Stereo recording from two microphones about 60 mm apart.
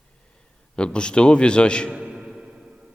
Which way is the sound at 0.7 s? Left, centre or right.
Centre.